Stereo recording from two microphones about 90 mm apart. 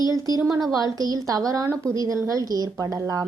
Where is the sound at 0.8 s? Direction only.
45° right (ahead or behind).